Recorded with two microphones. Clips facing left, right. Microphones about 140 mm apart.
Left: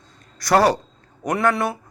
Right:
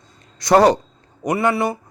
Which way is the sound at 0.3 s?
20° right (ahead or behind).